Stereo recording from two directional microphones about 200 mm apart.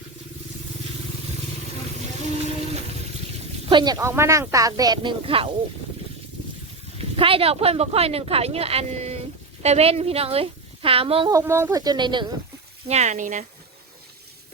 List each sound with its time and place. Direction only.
3.7 s speech: 25° right (ahead or behind)
3.9 s speech: 10° right (ahead or behind); by 5.5 s 30° right (ahead or behind)
7.0 s speech: 30° right (ahead or behind)
11.3 s speech: 15° right (ahead or behind)
12.9 s speech: 35° right (ahead or behind)